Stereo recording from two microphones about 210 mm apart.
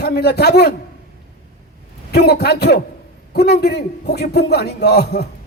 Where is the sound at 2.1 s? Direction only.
50° left (ahead or behind).